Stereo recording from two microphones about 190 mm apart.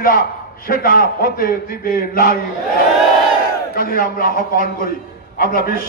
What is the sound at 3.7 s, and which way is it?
A man's voice, 50° left (ahead or behind).